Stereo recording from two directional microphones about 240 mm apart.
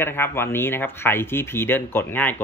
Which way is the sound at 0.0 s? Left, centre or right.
Centre.